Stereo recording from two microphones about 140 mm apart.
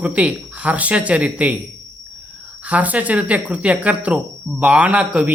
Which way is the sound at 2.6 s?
10° right (ahead or behind).